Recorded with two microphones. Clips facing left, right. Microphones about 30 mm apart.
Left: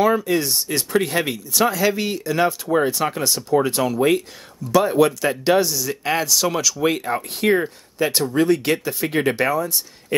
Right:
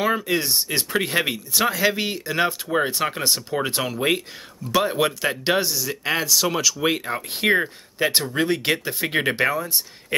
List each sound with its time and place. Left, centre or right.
0.0 s a sound: right
0.4 s speech: right
7.3 s speech: right